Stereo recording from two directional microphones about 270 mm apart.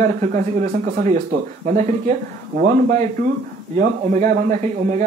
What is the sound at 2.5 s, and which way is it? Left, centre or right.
A man's voice, right.